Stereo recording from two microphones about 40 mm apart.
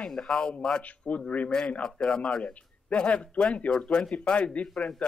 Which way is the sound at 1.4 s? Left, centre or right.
Left.